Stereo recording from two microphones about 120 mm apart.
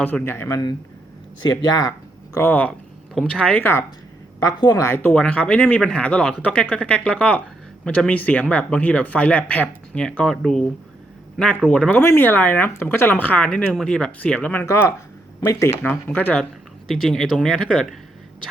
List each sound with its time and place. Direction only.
0.0 s a man's voice: 20° left (ahead or behind)
1.4 s speech: 35° left (ahead or behind)
2.3 s speech: 15° left (ahead or behind)
4.4 s a man's voice: 30° left (ahead or behind)
4.9 s speech: 15° left (ahead or behind)
11.7 s a man's voice: 10° left (ahead or behind); by 15.7 s 25° left (ahead or behind)
15.8 s speech: 15° left (ahead or behind)